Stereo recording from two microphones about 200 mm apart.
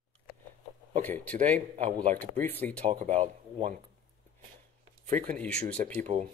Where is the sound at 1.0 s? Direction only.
10° left (ahead or behind).